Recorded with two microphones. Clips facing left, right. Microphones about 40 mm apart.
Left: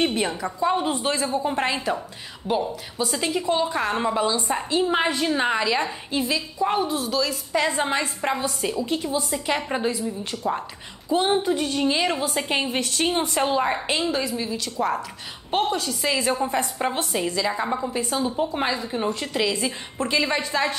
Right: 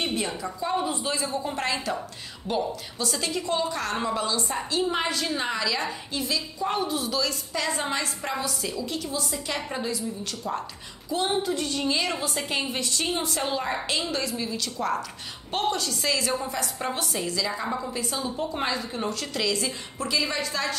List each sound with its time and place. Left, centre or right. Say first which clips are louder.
0.0 s a woman's voice: left 5 dB; left
1.3 s a woman's voice: left 4 dB; left
6.8 s a woman's voice: left 3 dB; centre
7.5 s a woman's voice: left 7 dB; left
14.1 s a woman's voice: left 3 dB; centre
20.0 s a woman's voice: left 4 dB; left